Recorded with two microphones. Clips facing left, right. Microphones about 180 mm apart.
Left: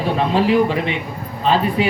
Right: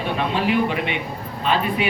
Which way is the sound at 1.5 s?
35° left (ahead or behind).